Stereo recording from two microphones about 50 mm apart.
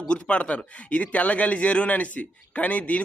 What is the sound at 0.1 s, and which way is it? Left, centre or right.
A man's voice, left.